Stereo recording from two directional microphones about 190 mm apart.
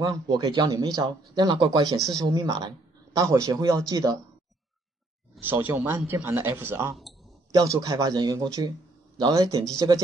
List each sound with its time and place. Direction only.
0.0 s a man's voice: 20° right (ahead or behind)
5.4 s a man's voice: 10° right (ahead or behind)